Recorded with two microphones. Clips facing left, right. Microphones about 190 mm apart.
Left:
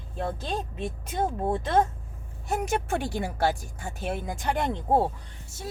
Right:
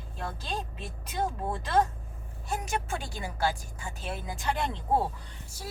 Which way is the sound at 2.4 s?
60° left (ahead or behind).